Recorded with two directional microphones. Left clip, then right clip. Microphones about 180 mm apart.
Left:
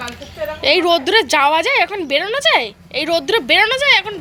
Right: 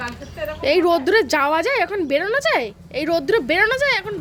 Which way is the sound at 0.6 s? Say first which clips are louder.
Left 3 dB; 20° right (ahead or behind).